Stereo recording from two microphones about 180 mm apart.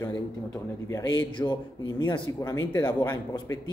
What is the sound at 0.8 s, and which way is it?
Speech, 20° left (ahead or behind).